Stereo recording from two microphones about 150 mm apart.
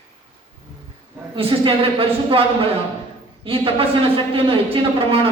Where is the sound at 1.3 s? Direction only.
40° right (ahead or behind).